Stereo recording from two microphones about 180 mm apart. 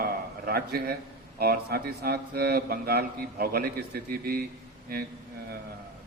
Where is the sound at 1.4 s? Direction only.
60° right (ahead or behind).